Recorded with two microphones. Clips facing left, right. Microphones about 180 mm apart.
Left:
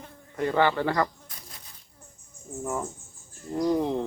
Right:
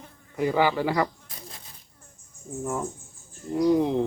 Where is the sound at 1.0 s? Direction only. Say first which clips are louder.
Right 2 dB; 25° right (ahead or behind).